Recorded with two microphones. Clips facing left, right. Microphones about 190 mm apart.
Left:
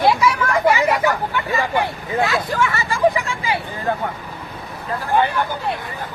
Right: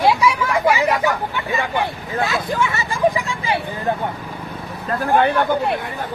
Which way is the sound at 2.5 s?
20° right (ahead or behind).